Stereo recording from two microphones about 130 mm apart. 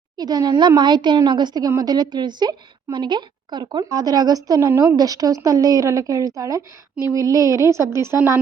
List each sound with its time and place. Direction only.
0.2 s a woman's voice: 30° right (ahead or behind)